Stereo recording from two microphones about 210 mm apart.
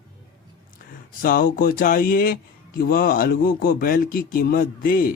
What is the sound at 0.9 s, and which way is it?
A man's voice, 45° left (ahead or behind).